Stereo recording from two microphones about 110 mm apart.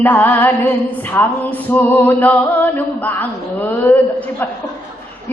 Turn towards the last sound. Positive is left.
turn(degrees=15)  # may be behind; listen again after turning